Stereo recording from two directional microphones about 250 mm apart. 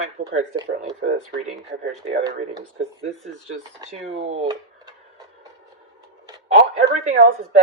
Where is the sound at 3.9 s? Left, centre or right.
Right.